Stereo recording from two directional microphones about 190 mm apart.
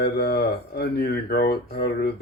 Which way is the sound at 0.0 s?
60° left (ahead or behind).